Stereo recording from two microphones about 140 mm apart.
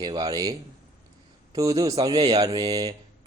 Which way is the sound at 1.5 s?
25° right (ahead or behind).